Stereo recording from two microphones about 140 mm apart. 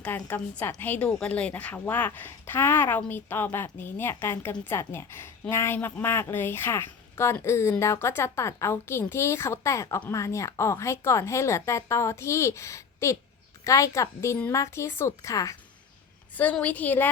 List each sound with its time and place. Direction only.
0.0 s a woman's voice: 10° left (ahead or behind)
16.3 s a woman's voice: 10° left (ahead or behind)